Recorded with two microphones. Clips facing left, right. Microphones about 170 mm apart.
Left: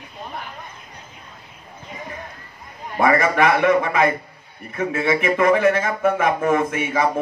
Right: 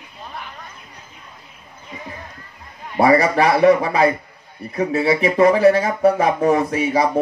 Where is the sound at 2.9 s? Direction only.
35° right (ahead or behind).